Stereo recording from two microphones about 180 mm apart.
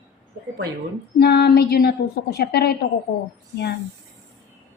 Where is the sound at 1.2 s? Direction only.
65° left (ahead or behind).